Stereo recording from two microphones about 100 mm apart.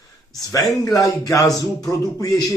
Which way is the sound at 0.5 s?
35° left (ahead or behind).